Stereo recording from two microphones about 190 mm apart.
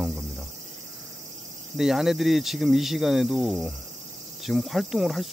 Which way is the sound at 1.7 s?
Centre (ahead or behind).